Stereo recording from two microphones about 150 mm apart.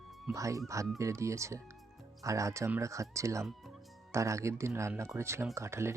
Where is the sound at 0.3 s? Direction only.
20° right (ahead or behind).